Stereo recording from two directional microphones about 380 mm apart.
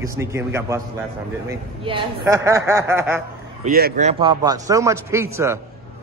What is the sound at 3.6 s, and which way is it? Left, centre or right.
A man's voice, right.